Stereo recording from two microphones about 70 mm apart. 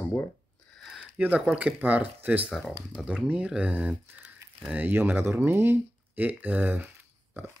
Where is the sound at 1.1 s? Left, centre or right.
Right.